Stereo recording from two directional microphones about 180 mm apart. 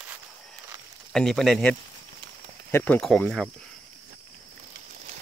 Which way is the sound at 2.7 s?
10° left (ahead or behind).